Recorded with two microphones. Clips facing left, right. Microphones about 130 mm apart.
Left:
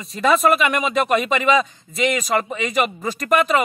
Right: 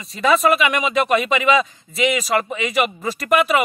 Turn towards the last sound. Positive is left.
turn(degrees=-5)  # may be behind; listen again after turning